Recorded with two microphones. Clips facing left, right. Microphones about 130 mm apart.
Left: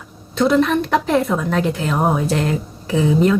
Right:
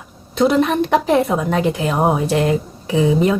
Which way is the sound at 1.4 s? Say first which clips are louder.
Right 2 dB; 15° right (ahead or behind).